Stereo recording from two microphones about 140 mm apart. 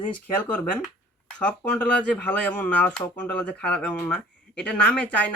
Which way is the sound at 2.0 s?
10° left (ahead or behind).